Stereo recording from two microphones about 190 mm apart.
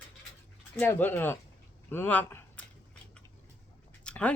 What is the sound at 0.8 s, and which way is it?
Speech, 10° left (ahead or behind).